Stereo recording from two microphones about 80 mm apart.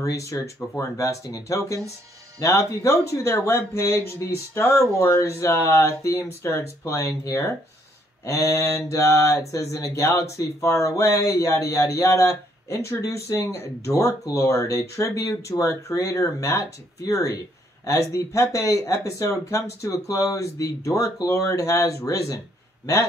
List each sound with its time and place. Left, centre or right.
0.0 s mantra: left
15.9 s speech: left
17.8 s mantra: left